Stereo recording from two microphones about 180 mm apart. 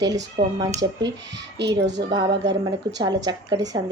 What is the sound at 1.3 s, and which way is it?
Speech, 75° right (ahead or behind).